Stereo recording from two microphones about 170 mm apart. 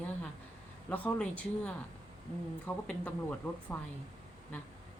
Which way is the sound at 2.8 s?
10° left (ahead or behind).